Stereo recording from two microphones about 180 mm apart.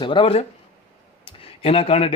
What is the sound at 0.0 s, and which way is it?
Speech, 25° left (ahead or behind).